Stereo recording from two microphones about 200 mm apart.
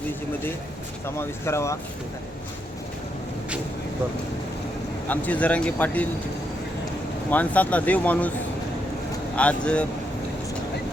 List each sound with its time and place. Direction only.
1.0 s speech: 10° left (ahead or behind)
5.0 s speech: 10° left (ahead or behind)
7.3 s speech: 10° left (ahead or behind)
9.3 s speech: 5° left (ahead or behind)